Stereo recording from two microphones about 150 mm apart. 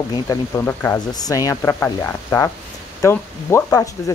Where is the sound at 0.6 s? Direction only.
15° left (ahead or behind).